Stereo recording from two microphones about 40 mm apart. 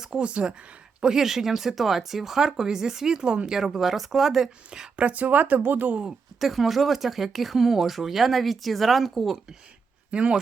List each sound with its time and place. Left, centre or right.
0.0 s speech: right
1.0 s speech: centre
3.6 s speech: centre
4.9 s speech: right
6.4 s speech: centre
10.1 s speech: right